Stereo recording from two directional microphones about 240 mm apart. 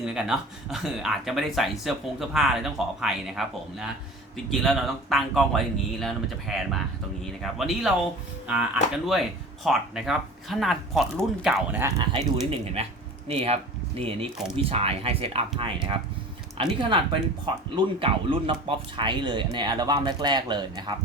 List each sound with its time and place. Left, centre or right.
0.0 s speech: centre
12.5 s speech: right